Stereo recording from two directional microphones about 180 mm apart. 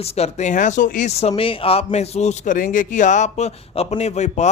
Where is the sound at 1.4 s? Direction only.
30° left (ahead or behind).